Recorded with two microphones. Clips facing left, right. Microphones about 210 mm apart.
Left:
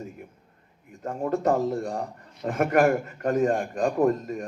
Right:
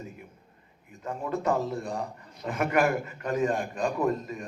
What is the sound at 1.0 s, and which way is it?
A man's voice, 45° left (ahead or behind).